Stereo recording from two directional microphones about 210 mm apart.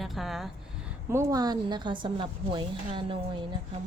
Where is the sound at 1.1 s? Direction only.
15° right (ahead or behind).